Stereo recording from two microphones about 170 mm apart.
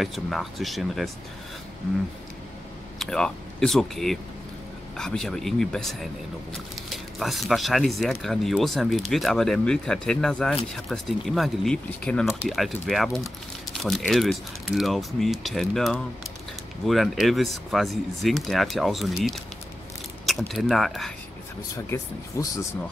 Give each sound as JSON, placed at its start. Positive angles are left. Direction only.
{"t": 0.0, "sound": "speech", "side_deg": 0}
{"t": 3.0, "sound": "speech", "side_deg": 5}
{"t": 21.9, "sound": "speech", "side_deg": 20}